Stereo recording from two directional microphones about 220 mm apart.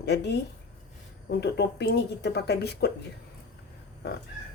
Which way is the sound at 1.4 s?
50° left (ahead or behind).